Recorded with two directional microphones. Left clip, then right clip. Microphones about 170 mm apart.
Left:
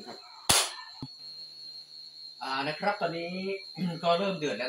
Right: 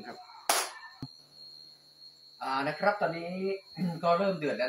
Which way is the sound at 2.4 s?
15° right (ahead or behind).